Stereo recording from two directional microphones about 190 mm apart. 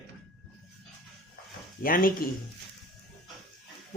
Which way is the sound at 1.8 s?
50° left (ahead or behind).